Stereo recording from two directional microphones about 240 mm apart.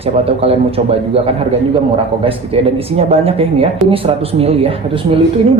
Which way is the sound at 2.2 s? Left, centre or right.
Right.